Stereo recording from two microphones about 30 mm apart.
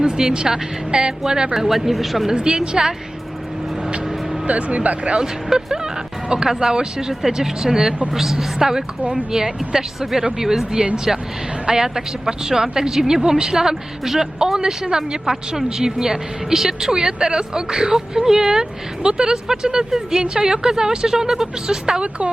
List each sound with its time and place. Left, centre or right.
0.0 s a woman's voice: right
1.5 s speech: centre
2.3 s a woman's voice: right
4.4 s speech: right
5.1 s a woman's voice: right
7.1 s a woman's voice: centre
16.9 s a woman's voice: right